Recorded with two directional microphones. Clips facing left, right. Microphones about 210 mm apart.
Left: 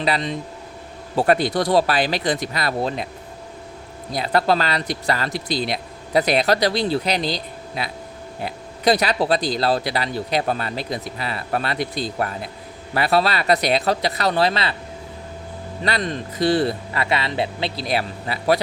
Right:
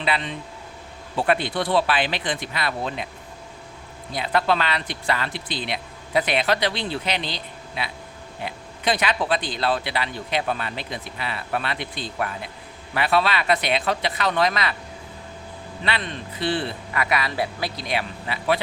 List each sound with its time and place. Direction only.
0.0 s speech: 40° left (ahead or behind)
4.1 s speech: 40° left (ahead or behind)
15.8 s speech: 40° left (ahead or behind); by 17.8 s 25° left (ahead or behind)
17.8 s speech: 40° left (ahead or behind)